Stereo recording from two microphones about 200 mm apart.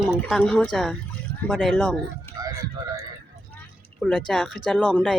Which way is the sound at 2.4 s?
20° right (ahead or behind).